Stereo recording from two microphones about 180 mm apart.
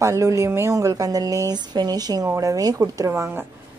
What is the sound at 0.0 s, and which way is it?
A woman's voice, 15° right (ahead or behind).